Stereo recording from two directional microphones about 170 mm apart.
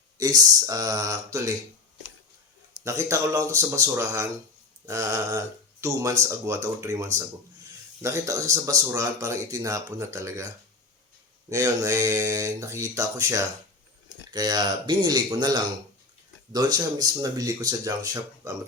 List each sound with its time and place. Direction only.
0.2 s speech: 20° right (ahead or behind)
2.7 s speech: 15° right (ahead or behind)